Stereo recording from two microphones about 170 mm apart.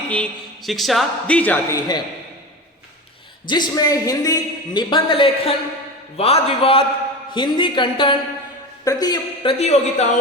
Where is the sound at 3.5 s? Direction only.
25° left (ahead or behind).